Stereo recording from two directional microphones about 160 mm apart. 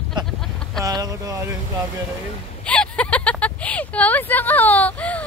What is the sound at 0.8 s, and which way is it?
Speech, 25° right (ahead or behind).